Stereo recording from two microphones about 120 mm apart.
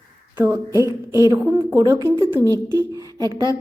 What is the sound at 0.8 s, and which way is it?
A woman's voice, 25° right (ahead or behind).